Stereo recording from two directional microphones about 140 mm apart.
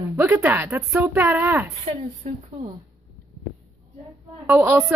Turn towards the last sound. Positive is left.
turn(degrees=-20)  # may be behind; listen again after turning